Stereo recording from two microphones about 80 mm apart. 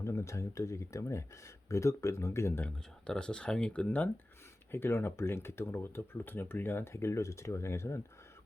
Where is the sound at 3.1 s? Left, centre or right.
Centre.